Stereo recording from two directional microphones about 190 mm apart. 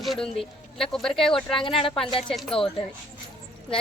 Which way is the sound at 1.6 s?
30° left (ahead or behind).